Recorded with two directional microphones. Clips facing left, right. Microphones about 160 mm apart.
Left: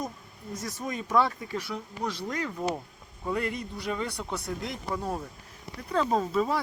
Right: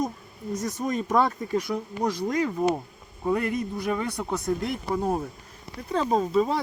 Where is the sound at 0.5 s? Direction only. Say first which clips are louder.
Right 7 dB; 20° right (ahead or behind).